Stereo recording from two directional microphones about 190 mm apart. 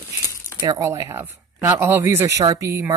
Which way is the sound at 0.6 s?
20° right (ahead or behind).